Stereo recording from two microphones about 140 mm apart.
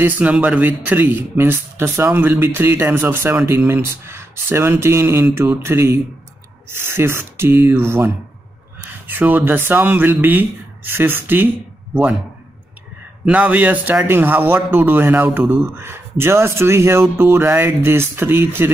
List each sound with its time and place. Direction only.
0.0 s a man's voice: 10° right (ahead or behind)
13.2 s a man's voice: 10° right (ahead or behind)